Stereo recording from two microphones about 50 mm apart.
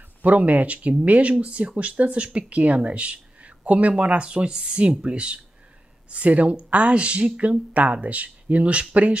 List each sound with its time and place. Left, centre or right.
0.2 s speech: right